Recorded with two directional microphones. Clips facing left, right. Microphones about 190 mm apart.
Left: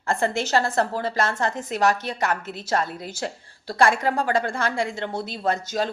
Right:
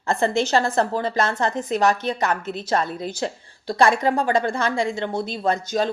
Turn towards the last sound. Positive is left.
turn(degrees=-20)  # may be behind; listen again after turning